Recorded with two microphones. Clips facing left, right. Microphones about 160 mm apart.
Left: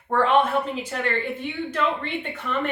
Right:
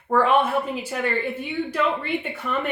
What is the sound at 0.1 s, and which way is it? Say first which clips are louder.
Speech: right 1 dB; 5° right (ahead or behind).